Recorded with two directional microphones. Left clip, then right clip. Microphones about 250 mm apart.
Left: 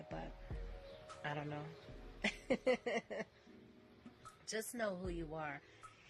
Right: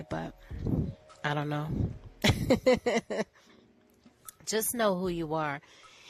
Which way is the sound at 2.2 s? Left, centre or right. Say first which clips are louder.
Right 12 dB; right.